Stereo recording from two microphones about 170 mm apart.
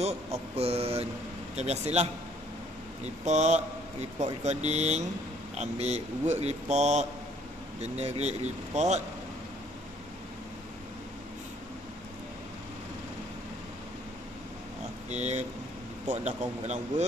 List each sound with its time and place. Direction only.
0.6 s speech: 35° right (ahead or behind)
3.3 s speech: 40° right (ahead or behind)
15.0 s speech: 40° right (ahead or behind)